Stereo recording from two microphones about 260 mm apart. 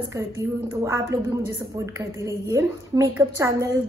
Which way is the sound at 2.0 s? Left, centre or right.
Centre.